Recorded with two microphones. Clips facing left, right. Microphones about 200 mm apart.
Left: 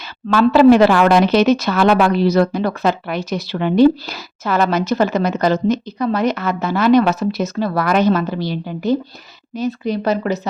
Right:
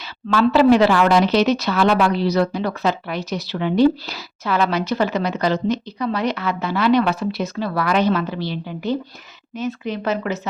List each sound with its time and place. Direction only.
0.3 s speech: 50° left (ahead or behind)